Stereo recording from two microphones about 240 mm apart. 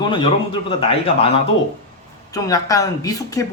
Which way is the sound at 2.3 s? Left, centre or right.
Centre.